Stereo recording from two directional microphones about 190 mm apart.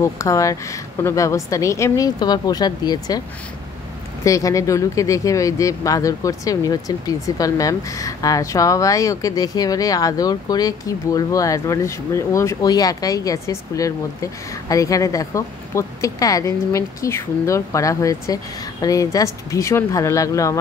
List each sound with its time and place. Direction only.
0.0 s speech: 15° left (ahead or behind)
4.2 s speech: 15° left (ahead or behind)